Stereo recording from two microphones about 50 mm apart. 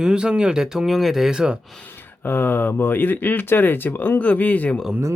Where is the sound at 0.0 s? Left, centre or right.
Centre.